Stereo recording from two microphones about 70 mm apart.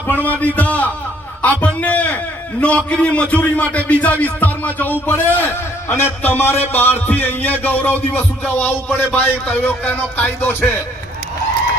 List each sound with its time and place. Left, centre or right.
0.1 s speech: left